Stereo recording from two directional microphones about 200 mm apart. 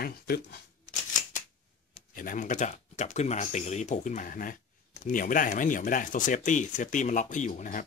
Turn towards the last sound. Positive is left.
turn(degrees=40)  # may be behind; listen again after turning